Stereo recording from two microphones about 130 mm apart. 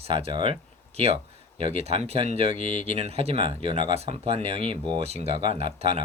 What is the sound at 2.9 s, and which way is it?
Speech, 50° right (ahead or behind).